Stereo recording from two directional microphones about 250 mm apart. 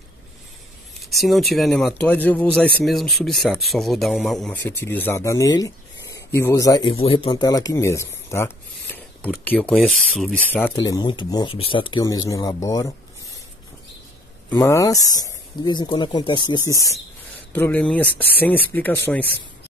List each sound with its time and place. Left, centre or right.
1.1 s speech: centre
10.9 s speech: centre
14.5 s speech: centre